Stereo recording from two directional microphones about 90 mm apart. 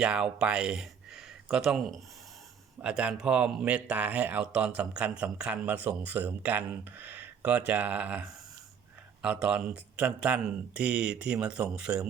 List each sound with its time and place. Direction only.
0.0 s speech: 10° right (ahead or behind)